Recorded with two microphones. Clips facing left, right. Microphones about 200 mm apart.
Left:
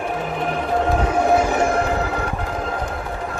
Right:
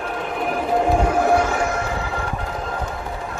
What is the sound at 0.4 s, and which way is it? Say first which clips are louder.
Music: right 2 dB; 5° right (ahead or behind).